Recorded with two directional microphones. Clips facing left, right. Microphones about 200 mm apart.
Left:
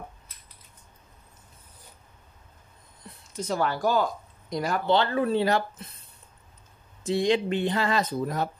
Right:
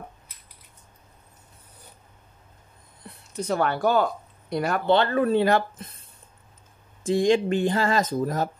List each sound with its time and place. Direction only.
3.0 s a sound: 60° right (ahead or behind)
3.3 s speech: 65° right (ahead or behind)
7.0 s speech: 50° right (ahead or behind)